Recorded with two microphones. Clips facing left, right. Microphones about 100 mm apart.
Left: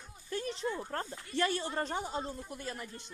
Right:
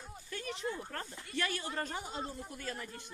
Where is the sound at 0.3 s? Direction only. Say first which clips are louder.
Left 5 dB; 30° left (ahead or behind).